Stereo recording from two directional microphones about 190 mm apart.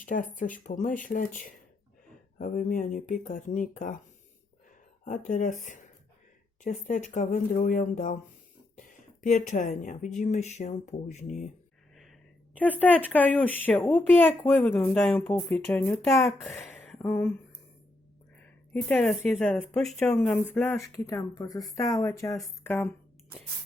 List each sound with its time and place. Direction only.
0.0 s speech: 45° left (ahead or behind)
5.0 s a woman's voice: 45° left (ahead or behind)
13.1 s speech: 10° left (ahead or behind)
16.4 s a sound: centre (ahead or behind)
17.0 s speech: 10° left (ahead or behind)
18.3 s speech: 5° left (ahead or behind)
22.8 s shuffling cards: 10° left (ahead or behind)